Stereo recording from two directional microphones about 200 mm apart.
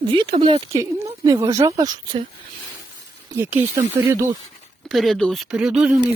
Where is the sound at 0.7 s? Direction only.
15° right (ahead or behind).